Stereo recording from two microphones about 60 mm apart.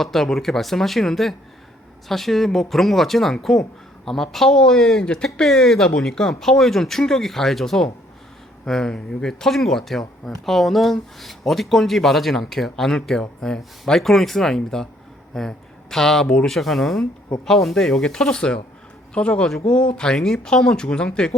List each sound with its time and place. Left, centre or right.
0.0 s speech: centre
19.5 s speech: centre
19.7 s speech: centre